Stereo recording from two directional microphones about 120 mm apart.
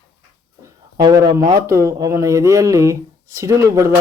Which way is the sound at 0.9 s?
30° right (ahead or behind).